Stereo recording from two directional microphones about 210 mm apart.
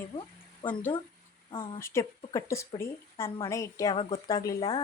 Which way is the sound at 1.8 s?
10° left (ahead or behind).